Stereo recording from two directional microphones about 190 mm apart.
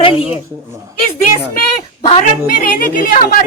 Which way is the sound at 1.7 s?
35° left (ahead or behind).